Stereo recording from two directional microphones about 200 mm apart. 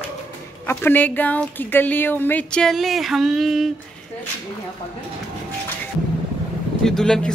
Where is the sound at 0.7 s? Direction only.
10° left (ahead or behind).